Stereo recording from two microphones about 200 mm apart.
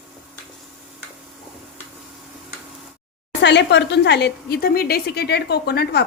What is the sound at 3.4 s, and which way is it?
Speech, 60° left (ahead or behind).